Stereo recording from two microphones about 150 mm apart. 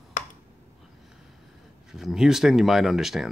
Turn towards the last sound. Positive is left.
turn(degrees=-5)  # may be behind; listen again after turning